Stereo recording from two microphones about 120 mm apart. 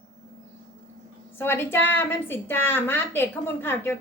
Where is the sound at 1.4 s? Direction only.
20° left (ahead or behind).